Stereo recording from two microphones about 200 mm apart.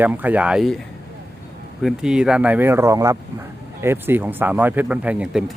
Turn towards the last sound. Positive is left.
turn(degrees=-5)  # may be behind; listen again after turning